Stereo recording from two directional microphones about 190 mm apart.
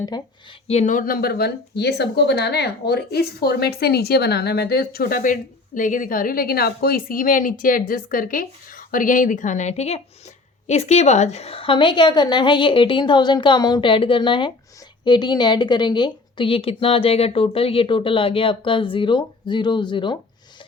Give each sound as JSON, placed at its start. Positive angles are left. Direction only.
{"t": 0.7, "sound": "a woman's voice", "side_deg": 40}